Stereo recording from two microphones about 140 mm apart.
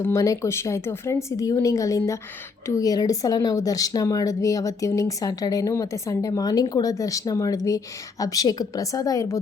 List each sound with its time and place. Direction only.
0.0 s speech: 20° left (ahead or behind)